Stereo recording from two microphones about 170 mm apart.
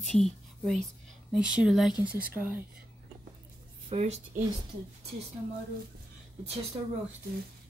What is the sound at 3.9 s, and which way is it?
Speech, 40° right (ahead or behind).